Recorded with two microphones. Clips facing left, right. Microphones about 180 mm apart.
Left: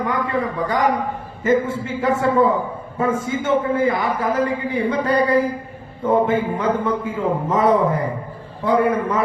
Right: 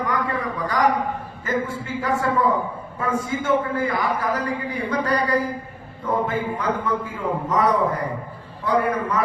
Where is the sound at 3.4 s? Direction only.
25° left (ahead or behind).